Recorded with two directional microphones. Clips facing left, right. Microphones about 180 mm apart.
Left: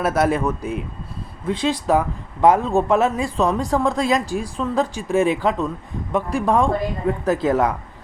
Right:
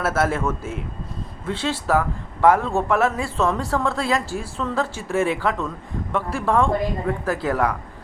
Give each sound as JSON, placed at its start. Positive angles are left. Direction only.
{"t": 0.0, "sound": "a man's voice", "side_deg": 15}